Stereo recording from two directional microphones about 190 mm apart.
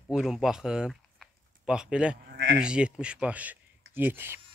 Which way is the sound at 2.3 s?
70° right (ahead or behind).